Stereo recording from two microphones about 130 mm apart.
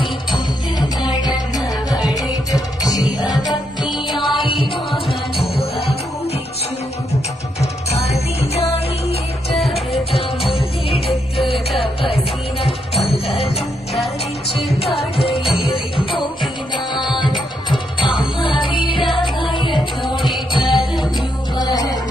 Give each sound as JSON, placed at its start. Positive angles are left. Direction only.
{"t": 0.3, "sound": "music", "side_deg": 35}
{"t": 7.6, "sound": "music", "side_deg": 55}
{"t": 13.9, "sound": "music", "side_deg": 0}
{"t": 14.7, "sound": "music", "side_deg": 50}
{"t": 16.7, "sound": "music", "side_deg": 35}
{"t": 20.2, "sound": "music", "side_deg": 0}
{"t": 21.6, "sound": "music", "side_deg": 30}